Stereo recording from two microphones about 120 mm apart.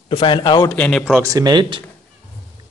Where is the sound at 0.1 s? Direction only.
45° left (ahead or behind).